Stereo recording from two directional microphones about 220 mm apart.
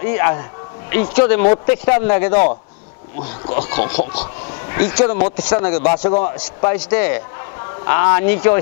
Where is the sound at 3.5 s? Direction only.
10° left (ahead or behind).